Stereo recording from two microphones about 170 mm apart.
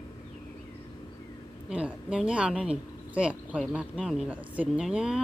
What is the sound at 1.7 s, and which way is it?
Speech, 5° right (ahead or behind).